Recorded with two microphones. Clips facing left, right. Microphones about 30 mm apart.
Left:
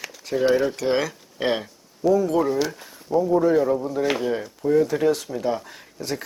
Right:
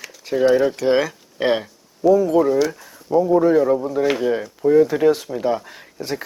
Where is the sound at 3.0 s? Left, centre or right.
Centre.